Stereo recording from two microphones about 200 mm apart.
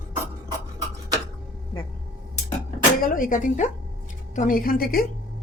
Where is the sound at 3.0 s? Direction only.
45° left (ahead or behind).